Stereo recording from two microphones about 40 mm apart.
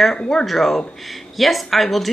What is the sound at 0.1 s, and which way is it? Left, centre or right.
Speech, centre.